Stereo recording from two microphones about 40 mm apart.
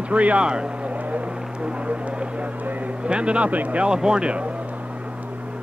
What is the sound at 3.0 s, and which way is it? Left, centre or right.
Speech, right.